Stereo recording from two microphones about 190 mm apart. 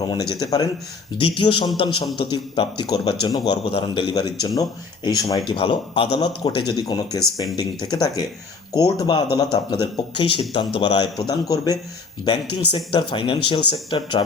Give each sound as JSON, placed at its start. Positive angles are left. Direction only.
{"t": 0.1, "sound": "a man's voice", "side_deg": 20}